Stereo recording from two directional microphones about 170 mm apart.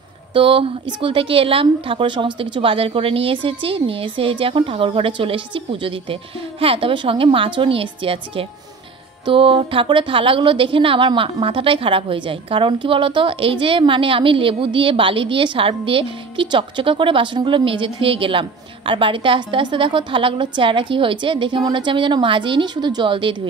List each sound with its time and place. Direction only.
0.3 s a woman's voice: 30° right (ahead or behind)